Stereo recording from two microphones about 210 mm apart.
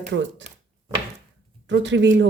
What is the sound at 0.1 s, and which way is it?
Speech, 60° right (ahead or behind).